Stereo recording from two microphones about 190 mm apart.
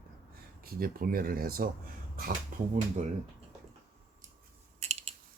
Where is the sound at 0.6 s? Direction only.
50° right (ahead or behind).